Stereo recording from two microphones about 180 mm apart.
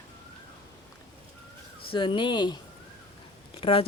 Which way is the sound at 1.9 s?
30° left (ahead or behind).